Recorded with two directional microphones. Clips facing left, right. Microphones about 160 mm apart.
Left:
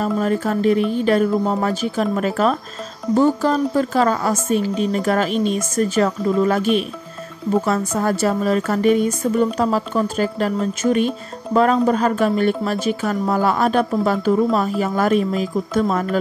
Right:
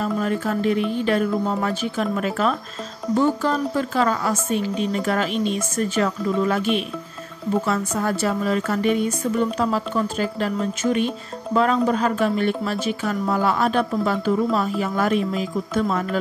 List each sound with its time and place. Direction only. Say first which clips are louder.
0.0 s speech: left 3 dB; 40° left (ahead or behind)